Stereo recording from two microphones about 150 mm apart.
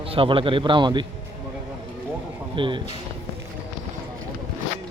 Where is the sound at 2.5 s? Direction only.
35° right (ahead or behind).